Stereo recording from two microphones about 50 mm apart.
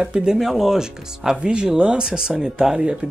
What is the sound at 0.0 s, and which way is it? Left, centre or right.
Speech, centre.